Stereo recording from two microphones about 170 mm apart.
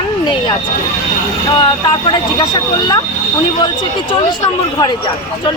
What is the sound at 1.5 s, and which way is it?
Speech, 30° left (ahead or behind).